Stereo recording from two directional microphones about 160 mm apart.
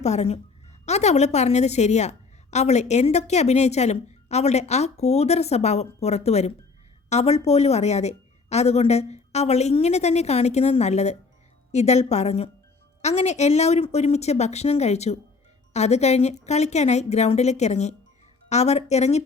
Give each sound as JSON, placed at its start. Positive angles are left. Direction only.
{"t": 0.0, "sound": "a woman's voice", "side_deg": 45}